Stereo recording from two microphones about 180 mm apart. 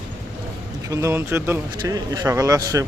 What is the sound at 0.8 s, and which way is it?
Speech, 15° right (ahead or behind).